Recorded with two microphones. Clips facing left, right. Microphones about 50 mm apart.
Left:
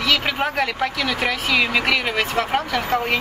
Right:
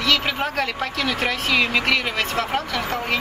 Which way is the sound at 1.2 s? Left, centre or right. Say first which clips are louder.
Left 1 dB; centre.